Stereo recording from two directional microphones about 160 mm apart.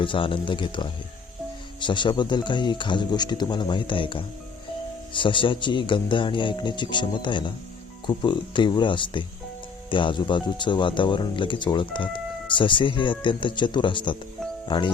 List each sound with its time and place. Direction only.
0.0 s speech: 30° left (ahead or behind)